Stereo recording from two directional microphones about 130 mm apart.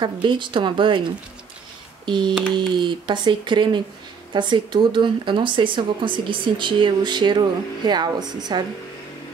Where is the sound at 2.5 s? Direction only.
35° right (ahead or behind).